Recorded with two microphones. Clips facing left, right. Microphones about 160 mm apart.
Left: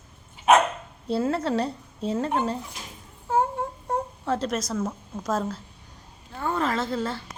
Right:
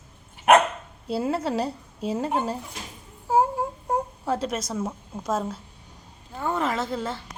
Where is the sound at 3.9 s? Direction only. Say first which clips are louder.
Even; 5° right (ahead or behind).